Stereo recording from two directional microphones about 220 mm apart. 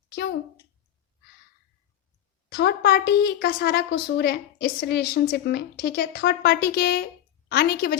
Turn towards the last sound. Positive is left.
turn(degrees=45)  # may be behind; listen again after turning